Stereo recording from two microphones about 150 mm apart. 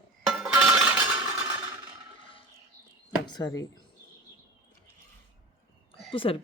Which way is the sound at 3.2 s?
25° left (ahead or behind).